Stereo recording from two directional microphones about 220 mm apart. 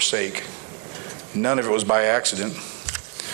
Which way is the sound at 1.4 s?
20° right (ahead or behind).